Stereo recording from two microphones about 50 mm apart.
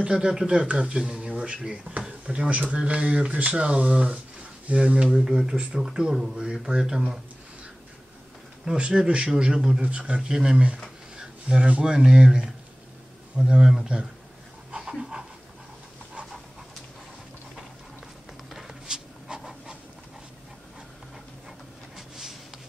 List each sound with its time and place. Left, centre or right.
0.0 s speech: centre
8.6 s speech: centre
9.8 s speech: right
13.5 s speech: centre
14.7 s dog: centre
18.9 s a sound: centre
21.9 s a sound: centre